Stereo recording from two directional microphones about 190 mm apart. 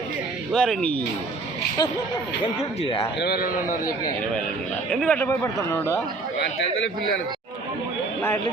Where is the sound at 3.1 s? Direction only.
55° left (ahead or behind).